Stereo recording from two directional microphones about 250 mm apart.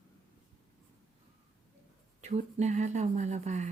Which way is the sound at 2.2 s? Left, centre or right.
Right.